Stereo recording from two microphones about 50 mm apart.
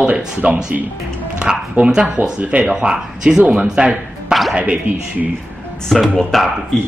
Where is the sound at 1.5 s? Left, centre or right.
Centre.